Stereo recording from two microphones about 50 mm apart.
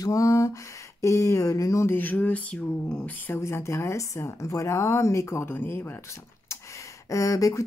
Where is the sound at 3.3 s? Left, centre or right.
Left.